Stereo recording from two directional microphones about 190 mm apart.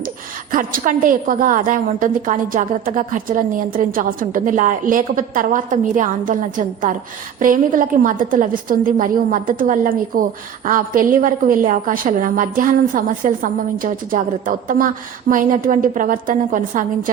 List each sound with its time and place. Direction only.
0.5 s a woman's voice: 45° right (ahead or behind)